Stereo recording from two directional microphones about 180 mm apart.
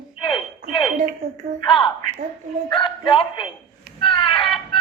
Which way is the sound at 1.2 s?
35° right (ahead or behind).